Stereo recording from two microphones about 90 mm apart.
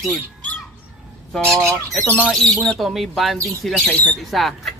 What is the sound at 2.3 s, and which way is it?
A man's voice, 5° left (ahead or behind).